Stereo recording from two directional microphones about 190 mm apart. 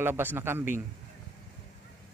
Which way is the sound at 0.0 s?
10° right (ahead or behind).